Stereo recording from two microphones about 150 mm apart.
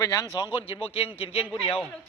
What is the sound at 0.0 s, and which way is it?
A man's voice, 25° left (ahead or behind).